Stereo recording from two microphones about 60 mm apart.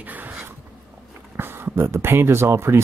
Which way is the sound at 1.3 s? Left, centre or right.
Right.